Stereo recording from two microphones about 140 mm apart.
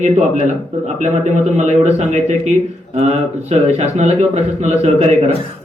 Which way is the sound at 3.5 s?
50° right (ahead or behind).